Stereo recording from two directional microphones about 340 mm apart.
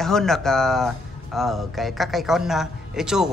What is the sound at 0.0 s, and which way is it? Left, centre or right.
Speech, centre.